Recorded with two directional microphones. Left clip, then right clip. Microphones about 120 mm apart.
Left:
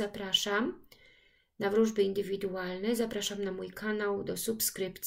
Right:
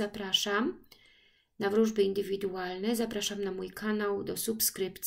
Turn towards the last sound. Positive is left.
turn(degrees=-35)  # may be behind; listen again after turning